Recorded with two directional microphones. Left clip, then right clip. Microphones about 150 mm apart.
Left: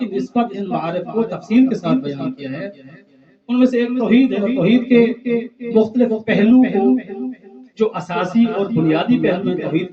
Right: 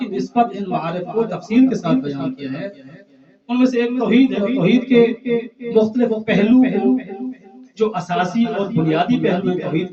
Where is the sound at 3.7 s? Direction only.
45° left (ahead or behind).